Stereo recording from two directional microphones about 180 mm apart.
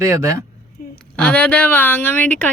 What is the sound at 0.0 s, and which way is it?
Speech, 15° right (ahead or behind).